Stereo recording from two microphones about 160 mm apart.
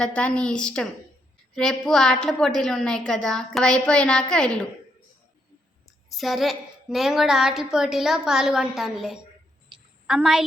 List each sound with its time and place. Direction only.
0.0 s a woman's voice: 5° left (ahead or behind)
6.1 s a woman's voice: centre (ahead or behind)
9.7 s a sound: 30° right (ahead or behind)
10.1 s a woman's voice: 5° right (ahead or behind)